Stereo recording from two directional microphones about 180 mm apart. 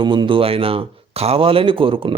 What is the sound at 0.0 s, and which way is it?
Speech, 25° right (ahead or behind).